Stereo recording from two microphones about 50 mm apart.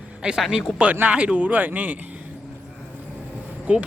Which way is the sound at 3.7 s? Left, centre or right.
Right.